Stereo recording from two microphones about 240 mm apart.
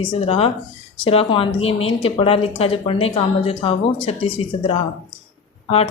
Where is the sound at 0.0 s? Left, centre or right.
Left.